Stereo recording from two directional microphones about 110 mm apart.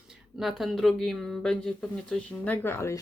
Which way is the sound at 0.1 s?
5° right (ahead or behind).